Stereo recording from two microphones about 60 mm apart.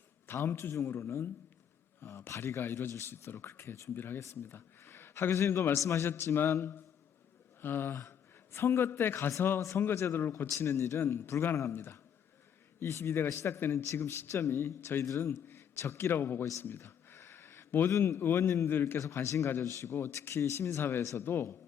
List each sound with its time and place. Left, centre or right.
0.3 s speech: left
2.3 s a man's voice: left
4.2 s speech: left
4.5 s a man's voice: left
5.7 s speech: left
6.1 s a man's voice: left
9.6 s speech: left
9.8 s a man's voice: left
10.6 s speech: left
11.7 s a man's voice: left
12.8 s a man's voice: left
16.6 s a sound: left
18.1 s speech: left
18.9 s a man's voice: left